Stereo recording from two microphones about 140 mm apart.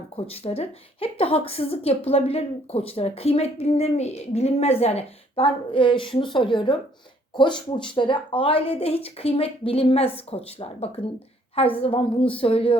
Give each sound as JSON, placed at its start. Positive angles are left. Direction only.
{"t": 0.2, "sound": "a woman's voice", "side_deg": 45}